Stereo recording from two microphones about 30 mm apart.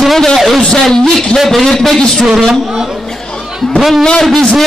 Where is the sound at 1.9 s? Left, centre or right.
Left.